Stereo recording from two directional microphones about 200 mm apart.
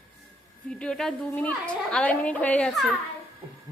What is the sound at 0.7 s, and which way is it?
A woman's voice, 5° left (ahead or behind).